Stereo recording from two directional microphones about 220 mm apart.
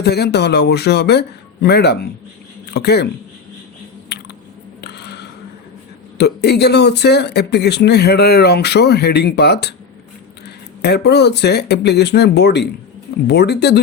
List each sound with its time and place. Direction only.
0.0 s speech: 50° left (ahead or behind)
4.8 s a sound: 50° left (ahead or behind)
6.1 s speech: 50° left (ahead or behind)